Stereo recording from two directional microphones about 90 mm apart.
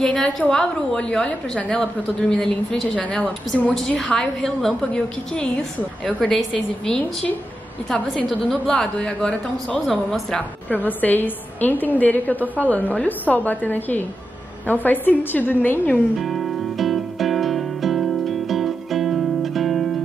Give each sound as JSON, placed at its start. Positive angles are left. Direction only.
{"t": 0.0, "sound": "a woman's voice", "side_deg": 10}
{"t": 16.2, "sound": "music", "side_deg": 0}